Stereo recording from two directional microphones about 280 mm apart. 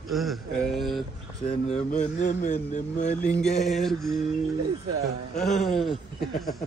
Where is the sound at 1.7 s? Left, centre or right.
Left.